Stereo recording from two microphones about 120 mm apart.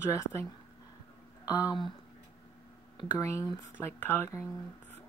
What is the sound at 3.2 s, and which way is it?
A woman's voice, 25° left (ahead or behind).